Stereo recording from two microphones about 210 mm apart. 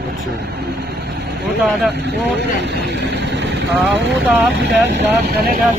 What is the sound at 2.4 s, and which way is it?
Speech, 55° right (ahead or behind).